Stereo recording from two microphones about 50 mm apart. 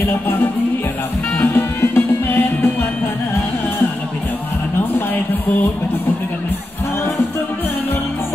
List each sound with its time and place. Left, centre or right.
1.4 s music: left